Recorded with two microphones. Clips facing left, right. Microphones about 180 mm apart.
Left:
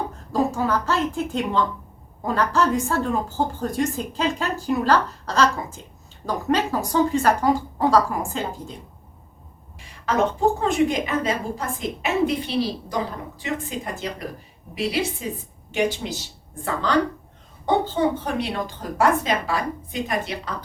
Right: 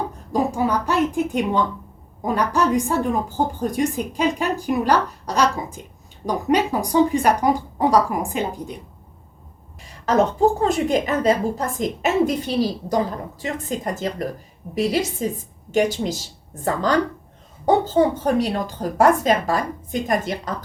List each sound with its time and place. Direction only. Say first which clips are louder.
0.3 s a woman's voice: right 1 dB; 15° right (ahead or behind)
10.6 s a woman's voice: right 1 dB; 40° right (ahead or behind)